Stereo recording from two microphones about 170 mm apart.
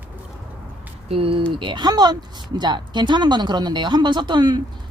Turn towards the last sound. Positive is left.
turn(degrees=-25)  # may be behind; listen again after turning